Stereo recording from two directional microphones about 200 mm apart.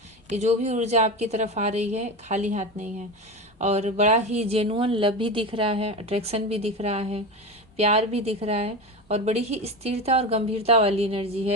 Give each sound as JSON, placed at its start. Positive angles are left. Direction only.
{"t": 0.3, "sound": "a woman's voice", "side_deg": -35}